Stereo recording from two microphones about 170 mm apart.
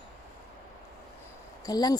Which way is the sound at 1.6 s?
25° left (ahead or behind).